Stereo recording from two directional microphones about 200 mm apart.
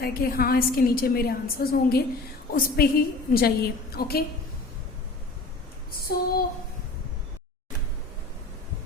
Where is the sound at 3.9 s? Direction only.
50° left (ahead or behind).